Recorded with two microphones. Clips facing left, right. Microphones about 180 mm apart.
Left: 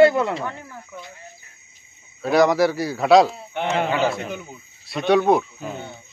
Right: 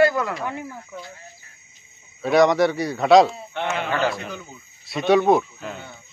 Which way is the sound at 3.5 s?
15° left (ahead or behind).